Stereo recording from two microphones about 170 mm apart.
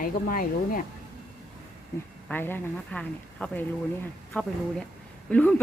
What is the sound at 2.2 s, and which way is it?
A woman's voice, 10° left (ahead or behind).